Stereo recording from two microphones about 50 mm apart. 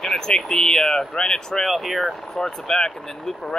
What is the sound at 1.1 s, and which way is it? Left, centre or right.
Speech, centre.